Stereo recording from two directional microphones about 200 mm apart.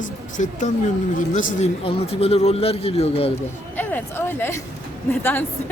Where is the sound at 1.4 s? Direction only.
40° left (ahead or behind).